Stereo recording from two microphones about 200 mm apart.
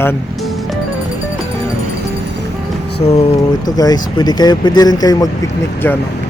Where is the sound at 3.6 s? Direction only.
20° left (ahead or behind).